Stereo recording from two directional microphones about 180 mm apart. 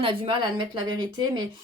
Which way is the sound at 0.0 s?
30° right (ahead or behind).